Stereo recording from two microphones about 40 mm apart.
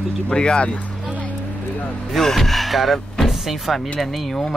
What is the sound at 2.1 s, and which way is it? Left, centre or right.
Speech, centre.